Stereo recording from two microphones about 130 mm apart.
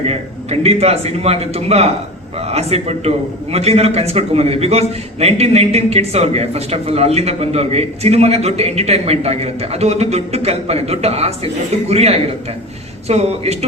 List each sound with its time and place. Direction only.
0.1 s a man's voice: 50° right (ahead or behind)